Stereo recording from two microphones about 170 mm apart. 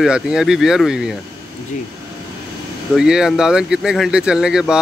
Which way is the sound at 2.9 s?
5° right (ahead or behind).